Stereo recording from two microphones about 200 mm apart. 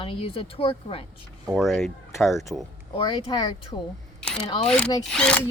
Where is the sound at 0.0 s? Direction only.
25° left (ahead or behind).